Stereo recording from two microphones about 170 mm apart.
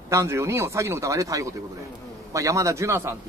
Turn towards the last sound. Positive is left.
turn(degrees=-15)  # may be behind; listen again after turning